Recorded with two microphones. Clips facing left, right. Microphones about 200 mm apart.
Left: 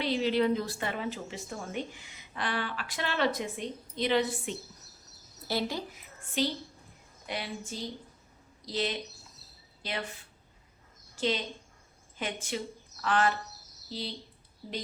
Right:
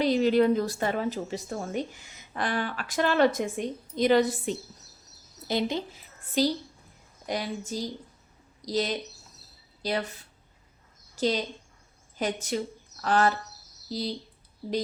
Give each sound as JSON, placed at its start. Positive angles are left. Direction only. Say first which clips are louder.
{"t": 0.0, "sound": "a woman's voice", "louder": "right 6 dB", "side_deg": -45}
{"t": 5.5, "sound": "a woman's voice", "louder": "right 4 dB", "side_deg": -20}
{"t": 11.1, "sound": "a woman's voice", "louder": "right 4 dB", "side_deg": -40}